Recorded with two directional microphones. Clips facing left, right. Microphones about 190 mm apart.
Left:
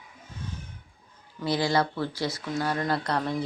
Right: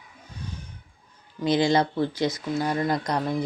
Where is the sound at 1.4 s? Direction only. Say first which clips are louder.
Right 4 dB; 20° right (ahead or behind).